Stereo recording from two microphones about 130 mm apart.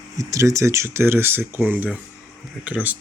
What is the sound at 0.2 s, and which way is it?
Speech, 25° right (ahead or behind).